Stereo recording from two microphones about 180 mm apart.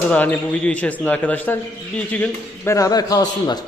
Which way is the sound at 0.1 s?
10° left (ahead or behind).